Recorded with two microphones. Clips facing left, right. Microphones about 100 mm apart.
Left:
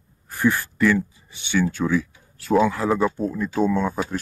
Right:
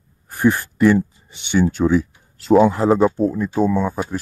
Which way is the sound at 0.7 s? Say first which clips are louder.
Right 5 dB; 25° right (ahead or behind).